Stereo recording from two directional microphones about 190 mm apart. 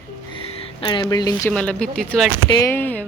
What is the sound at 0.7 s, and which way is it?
Speech, 25° left (ahead or behind).